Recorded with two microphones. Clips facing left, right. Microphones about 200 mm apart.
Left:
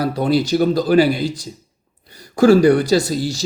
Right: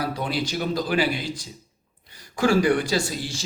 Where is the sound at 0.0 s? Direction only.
40° left (ahead or behind).